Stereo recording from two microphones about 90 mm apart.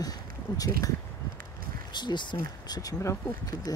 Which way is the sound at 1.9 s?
55° left (ahead or behind).